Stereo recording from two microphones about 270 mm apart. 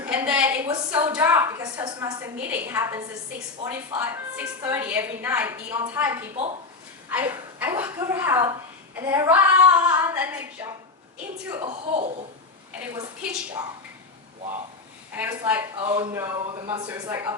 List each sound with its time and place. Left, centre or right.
0.0 s a sound: centre
3.6 s a woman's voice: centre
11.4 s a woman's voice: centre
11.7 s speech: right
12.8 s a woman's voice: centre
15.1 s a woman's voice: centre